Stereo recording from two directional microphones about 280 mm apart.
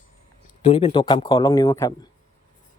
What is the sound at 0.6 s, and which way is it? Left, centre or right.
Speech, centre.